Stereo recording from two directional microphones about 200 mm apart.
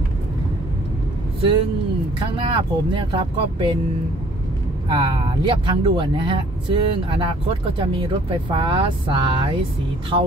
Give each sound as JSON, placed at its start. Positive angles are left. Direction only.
{"t": 2.1, "sound": "speech", "side_deg": -25}
{"t": 4.8, "sound": "speech", "side_deg": -25}